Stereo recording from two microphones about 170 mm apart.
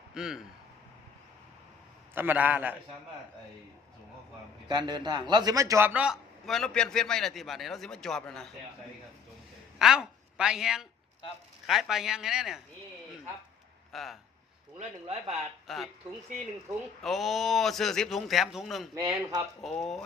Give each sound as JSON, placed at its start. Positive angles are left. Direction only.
{"t": 0.1, "sound": "speech", "side_deg": -5}
{"t": 2.1, "sound": "a man's voice", "side_deg": -10}
{"t": 4.7, "sound": "a man's voice", "side_deg": -25}
{"t": 9.7, "sound": "a woman's voice", "side_deg": -5}
{"t": 13.9, "sound": "a man's voice", "side_deg": 0}
{"t": 14.8, "sound": "speech", "side_deg": -40}
{"t": 15.6, "sound": "speech", "side_deg": 0}
{"t": 17.0, "sound": "a man's voice", "side_deg": 0}
{"t": 18.9, "sound": "speech", "side_deg": -20}
{"t": 19.6, "sound": "a man's voice", "side_deg": 0}